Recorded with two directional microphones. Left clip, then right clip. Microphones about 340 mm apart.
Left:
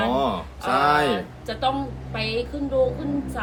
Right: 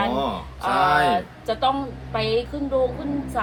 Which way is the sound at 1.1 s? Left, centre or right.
Centre.